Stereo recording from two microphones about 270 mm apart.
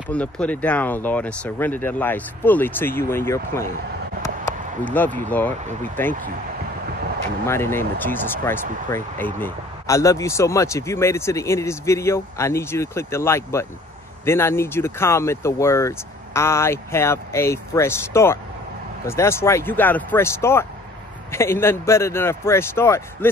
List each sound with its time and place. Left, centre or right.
0.1 s speech: centre
4.5 s a sound: centre
6.0 s speech: centre
7.4 s speech: centre